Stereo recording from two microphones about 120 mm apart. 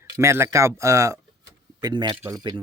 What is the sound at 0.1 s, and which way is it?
A man's voice, 25° right (ahead or behind).